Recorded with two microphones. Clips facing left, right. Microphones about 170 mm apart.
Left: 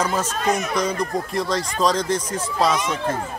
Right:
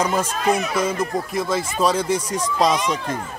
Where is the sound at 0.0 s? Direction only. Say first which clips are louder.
Right 2 dB; 10° right (ahead or behind).